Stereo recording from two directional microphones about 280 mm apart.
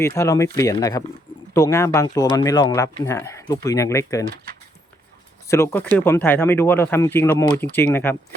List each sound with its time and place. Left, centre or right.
0.0 s speech: centre
5.5 s speech: centre